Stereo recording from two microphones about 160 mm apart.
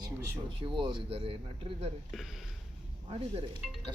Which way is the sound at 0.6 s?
30° right (ahead or behind).